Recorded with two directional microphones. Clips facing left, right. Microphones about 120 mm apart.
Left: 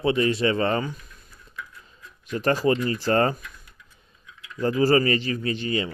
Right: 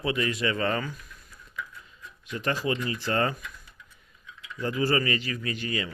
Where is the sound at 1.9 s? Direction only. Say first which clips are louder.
Left 5 dB; 40° left (ahead or behind).